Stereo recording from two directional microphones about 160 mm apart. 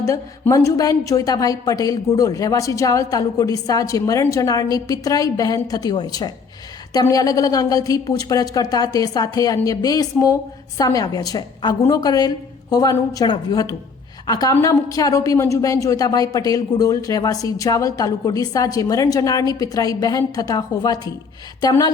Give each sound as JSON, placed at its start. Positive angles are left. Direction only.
{"t": 0.0, "sound": "a woman's voice", "side_deg": 20}